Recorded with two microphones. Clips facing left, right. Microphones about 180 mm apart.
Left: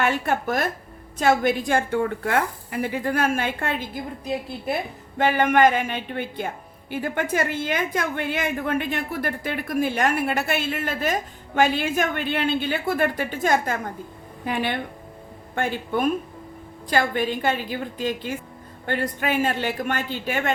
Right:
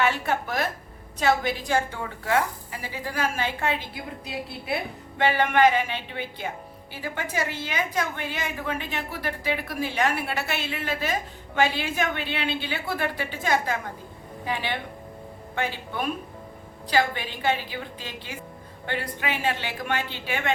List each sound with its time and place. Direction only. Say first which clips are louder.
0.0 s a woman's voice: left 2 dB; 50° left (ahead or behind)